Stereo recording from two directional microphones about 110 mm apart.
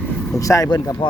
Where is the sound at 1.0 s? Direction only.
50° left (ahead or behind).